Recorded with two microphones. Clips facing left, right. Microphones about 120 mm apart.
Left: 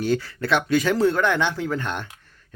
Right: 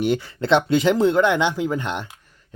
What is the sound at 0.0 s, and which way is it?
Speech, 20° right (ahead or behind).